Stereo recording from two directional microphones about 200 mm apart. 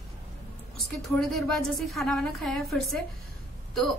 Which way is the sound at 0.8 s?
Centre (ahead or behind).